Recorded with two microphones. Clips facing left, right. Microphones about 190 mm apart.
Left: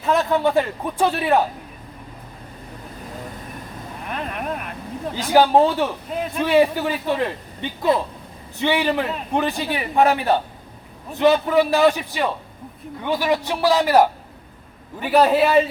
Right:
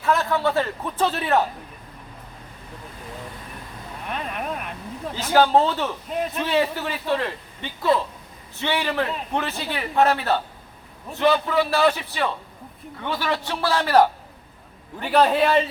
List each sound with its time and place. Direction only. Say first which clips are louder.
0.0 s a man's voice: left 3 dB; 20° left (ahead or behind)
4.0 s speech: left 1 dB; centre (ahead or behind)
5.3 s a man's voice: left 3 dB; 15° left (ahead or behind)
6.1 s speech: even; centre (ahead or behind)
6.5 s a man's voice: left 8 dB; 15° left (ahead or behind)